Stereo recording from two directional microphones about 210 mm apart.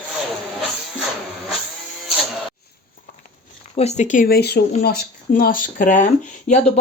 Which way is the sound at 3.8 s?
30° left (ahead or behind).